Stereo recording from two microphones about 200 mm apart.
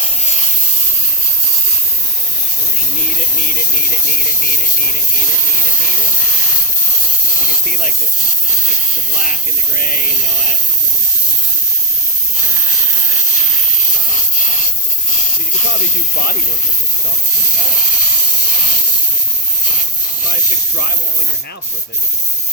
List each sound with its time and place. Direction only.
3.2 s speech: 45° left (ahead or behind)
7.3 s speech: 45° left (ahead or behind)
16.1 s speech: 45° left (ahead or behind)
20.2 s speech: 50° left (ahead or behind)